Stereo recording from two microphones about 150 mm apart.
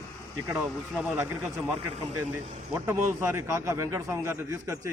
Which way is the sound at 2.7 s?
15° right (ahead or behind).